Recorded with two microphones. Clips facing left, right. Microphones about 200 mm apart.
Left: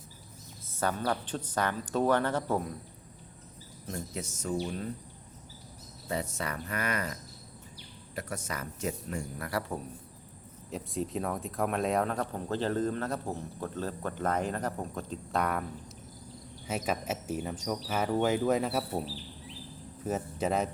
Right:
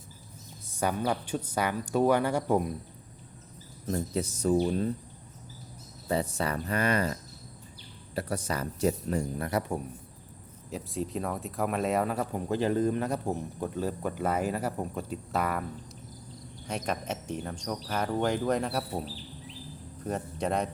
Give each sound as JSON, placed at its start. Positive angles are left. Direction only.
{"t": 0.8, "sound": "speech", "side_deg": -10}
{"t": 3.8, "sound": "speech", "side_deg": -35}
{"t": 6.1, "sound": "speech", "side_deg": -35}
{"t": 9.5, "sound": "speech", "side_deg": -20}
{"t": 10.7, "sound": "speech", "side_deg": 0}
{"t": 16.6, "sound": "speech", "side_deg": 5}
{"t": 20.1, "sound": "speech", "side_deg": 5}